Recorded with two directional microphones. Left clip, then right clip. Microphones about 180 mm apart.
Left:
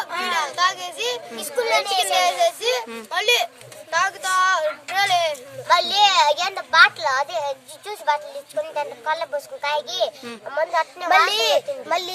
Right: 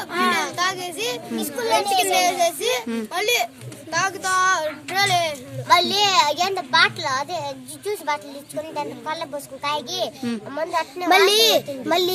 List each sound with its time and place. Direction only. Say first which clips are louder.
0.5 s a sound: left 2 dB; centre (ahead or behind)
1.4 s a child's voice: even; 30° left (ahead or behind)
2.0 s a child's voice: even; centre (ahead or behind)
11.3 s a child's voice: right 2 dB; 35° right (ahead or behind)